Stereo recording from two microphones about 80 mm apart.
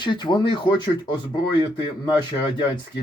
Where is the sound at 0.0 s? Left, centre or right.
Left.